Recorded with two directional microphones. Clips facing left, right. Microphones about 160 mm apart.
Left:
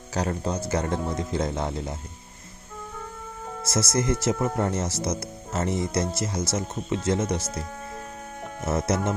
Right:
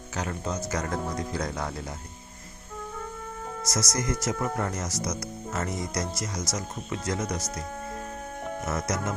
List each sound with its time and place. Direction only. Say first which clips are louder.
0.1 s speech: left 5 dB; 35° left (ahead or behind)
3.6 s speech: left 5 dB; 25° left (ahead or behind)
8.6 s speech: left 6 dB; 30° left (ahead or behind)